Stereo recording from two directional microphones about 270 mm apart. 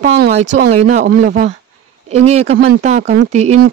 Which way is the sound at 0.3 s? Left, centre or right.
Right.